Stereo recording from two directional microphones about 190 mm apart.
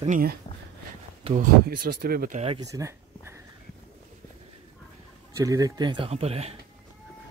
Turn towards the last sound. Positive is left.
turn(degrees=-30)  # may be behind; listen again after turning